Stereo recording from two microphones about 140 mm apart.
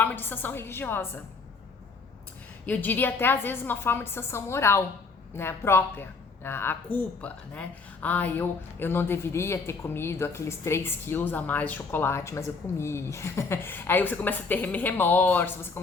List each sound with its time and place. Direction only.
0.0 s speech: 15° left (ahead or behind)
2.6 s speech: 10° left (ahead or behind)